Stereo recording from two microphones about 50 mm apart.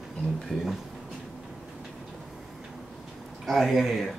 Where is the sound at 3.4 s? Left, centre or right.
Centre.